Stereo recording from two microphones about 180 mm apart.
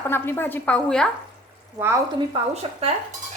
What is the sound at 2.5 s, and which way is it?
Speech, 35° right (ahead or behind).